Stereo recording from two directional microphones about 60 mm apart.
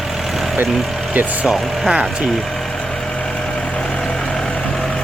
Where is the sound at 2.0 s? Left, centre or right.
Centre.